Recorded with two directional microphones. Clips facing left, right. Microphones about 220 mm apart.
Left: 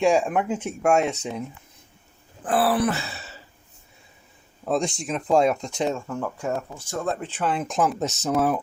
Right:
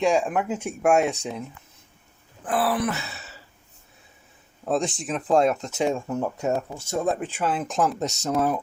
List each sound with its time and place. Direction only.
0.0 s speech: 5° left (ahead or behind)
0.3 s speech: 5° right (ahead or behind)
2.5 s dog: 30° left (ahead or behind)
4.6 s speech: centre (ahead or behind)
6.1 s speech: 20° right (ahead or behind); by 8.6 s 5° left (ahead or behind)